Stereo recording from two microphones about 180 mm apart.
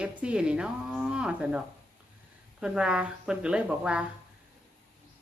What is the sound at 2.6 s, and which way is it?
A woman's voice, 5° right (ahead or behind).